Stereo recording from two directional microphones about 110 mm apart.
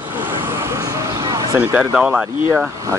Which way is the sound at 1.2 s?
30° right (ahead or behind).